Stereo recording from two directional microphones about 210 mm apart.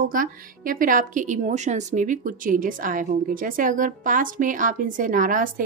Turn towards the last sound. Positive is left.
turn(degrees=-40)  # may be behind; listen again after turning